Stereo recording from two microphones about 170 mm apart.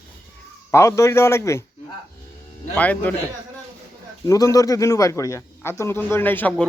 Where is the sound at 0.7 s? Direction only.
15° left (ahead or behind).